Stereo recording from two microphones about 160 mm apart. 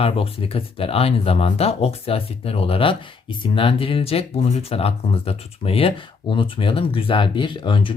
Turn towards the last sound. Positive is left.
turn(degrees=30)  # may be behind; listen again after turning